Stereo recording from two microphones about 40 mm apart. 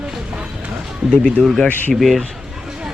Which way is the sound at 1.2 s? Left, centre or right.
Centre.